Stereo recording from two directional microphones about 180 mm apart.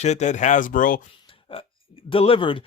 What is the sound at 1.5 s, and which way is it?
Speech, 30° left (ahead or behind).